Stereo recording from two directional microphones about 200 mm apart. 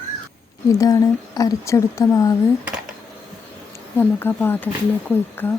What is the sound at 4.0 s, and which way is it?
Speech, 10° left (ahead or behind).